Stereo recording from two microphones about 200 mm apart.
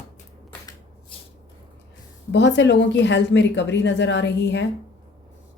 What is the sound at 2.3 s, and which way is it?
Speech, 65° left (ahead or behind).